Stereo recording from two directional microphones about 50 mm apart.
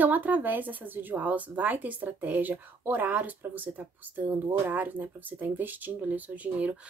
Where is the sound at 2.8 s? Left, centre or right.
Right.